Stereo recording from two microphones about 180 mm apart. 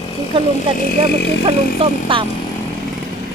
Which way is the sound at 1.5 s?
30° right (ahead or behind).